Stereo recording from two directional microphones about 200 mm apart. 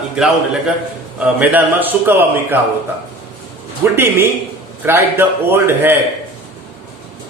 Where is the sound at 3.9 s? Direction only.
10° right (ahead or behind).